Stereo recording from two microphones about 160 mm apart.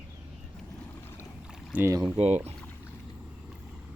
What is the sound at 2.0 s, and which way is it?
Speech, 35° right (ahead or behind).